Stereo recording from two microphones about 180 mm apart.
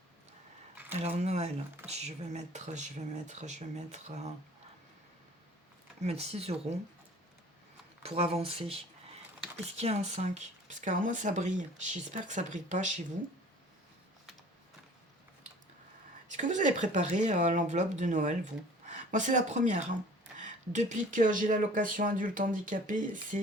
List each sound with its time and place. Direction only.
0.9 s speech: 35° right (ahead or behind)
6.0 s speech: 35° right (ahead or behind)
8.0 s speech: 35° right (ahead or behind)
16.3 s speech: 40° right (ahead or behind)